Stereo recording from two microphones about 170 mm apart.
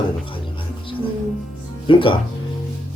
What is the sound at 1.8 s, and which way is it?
Speech, 30° left (ahead or behind).